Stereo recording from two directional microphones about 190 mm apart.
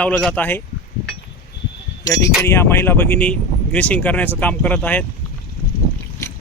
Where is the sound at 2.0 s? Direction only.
15° left (ahead or behind).